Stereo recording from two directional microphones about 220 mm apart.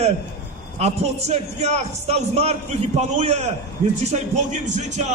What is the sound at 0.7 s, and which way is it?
A man's voice, 30° right (ahead or behind).